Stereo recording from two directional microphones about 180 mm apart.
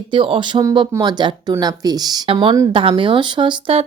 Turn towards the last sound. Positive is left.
turn(degrees=-30)  # may be behind; listen again after turning